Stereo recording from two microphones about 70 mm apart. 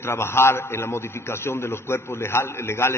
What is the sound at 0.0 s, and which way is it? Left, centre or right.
A man's voice, left.